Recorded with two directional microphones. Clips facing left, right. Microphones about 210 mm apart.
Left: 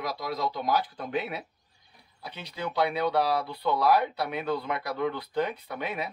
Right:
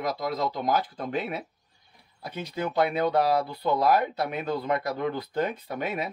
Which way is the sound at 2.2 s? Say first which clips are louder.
Right 4 dB; 45° right (ahead or behind).